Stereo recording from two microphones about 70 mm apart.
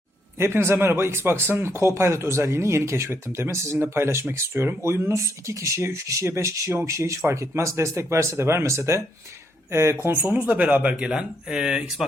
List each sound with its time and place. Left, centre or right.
0.3 s speech: right
10.3 s speech: right